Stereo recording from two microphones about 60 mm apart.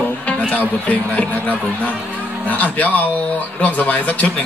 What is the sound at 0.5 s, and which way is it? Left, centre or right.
Speech, left.